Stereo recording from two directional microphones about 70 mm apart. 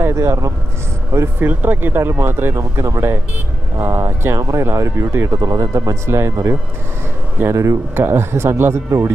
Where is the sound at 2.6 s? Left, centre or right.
Right.